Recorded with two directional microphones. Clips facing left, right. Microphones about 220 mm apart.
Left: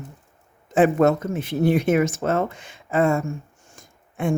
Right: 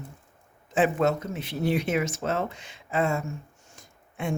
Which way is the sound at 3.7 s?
50° left (ahead or behind).